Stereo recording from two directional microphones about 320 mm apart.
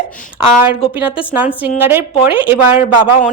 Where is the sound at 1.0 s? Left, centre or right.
Centre.